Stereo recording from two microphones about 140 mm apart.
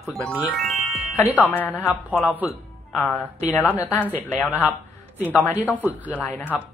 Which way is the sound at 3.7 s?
25° left (ahead or behind).